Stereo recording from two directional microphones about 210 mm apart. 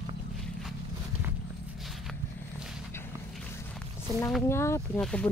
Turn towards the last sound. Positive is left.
turn(degrees=5)  # may be behind; listen again after turning